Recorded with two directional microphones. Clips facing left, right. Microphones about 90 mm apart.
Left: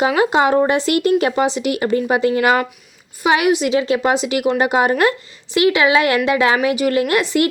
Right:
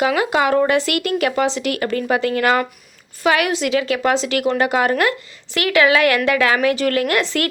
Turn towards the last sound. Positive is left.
turn(degrees=20)  # may be behind; listen again after turning